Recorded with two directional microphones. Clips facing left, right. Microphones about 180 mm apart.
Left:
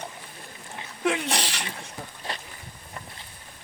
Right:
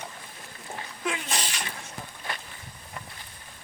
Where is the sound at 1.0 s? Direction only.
65° left (ahead or behind).